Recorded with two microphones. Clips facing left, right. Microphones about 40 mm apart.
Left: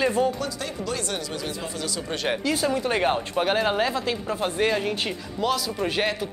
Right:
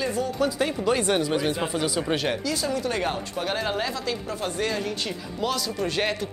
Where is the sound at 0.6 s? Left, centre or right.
Right.